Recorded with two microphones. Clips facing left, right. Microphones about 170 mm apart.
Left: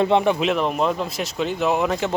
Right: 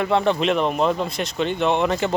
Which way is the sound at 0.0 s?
15° left (ahead or behind).